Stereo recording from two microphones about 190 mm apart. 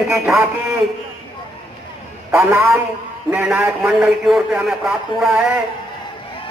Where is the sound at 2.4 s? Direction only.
15° right (ahead or behind).